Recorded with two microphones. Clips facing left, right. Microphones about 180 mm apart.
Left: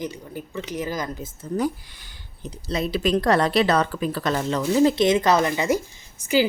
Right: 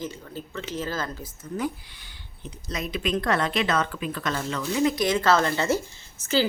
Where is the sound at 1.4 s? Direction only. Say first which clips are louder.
Left 5 dB; 40° left (ahead or behind).